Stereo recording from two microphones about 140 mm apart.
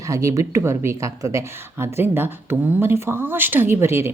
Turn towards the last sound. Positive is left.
turn(degrees=-20)  # may be behind; listen again after turning